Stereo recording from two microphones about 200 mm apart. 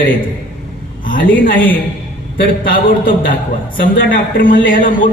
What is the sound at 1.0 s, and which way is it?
A man's voice, 40° left (ahead or behind).